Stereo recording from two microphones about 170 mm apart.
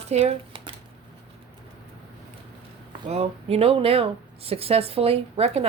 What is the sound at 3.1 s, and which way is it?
Speech, 35° right (ahead or behind).